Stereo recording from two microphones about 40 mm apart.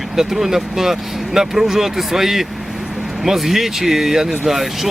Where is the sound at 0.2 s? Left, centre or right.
Centre.